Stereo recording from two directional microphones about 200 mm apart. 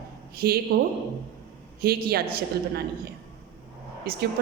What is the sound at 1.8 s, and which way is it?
A woman's voice, 50° right (ahead or behind).